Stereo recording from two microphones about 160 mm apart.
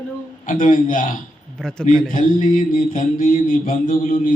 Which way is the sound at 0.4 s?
60° left (ahead or behind).